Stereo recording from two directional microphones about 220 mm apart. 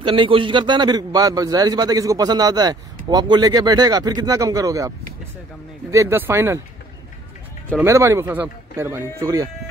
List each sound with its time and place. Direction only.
0.0 s a man's voice: 25° right (ahead or behind)
7.7 s a man's voice: 10° right (ahead or behind)